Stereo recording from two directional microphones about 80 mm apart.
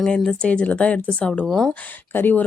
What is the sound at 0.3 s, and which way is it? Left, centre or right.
Speech, centre.